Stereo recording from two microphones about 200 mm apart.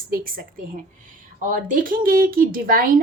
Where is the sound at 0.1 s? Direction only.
45° right (ahead or behind).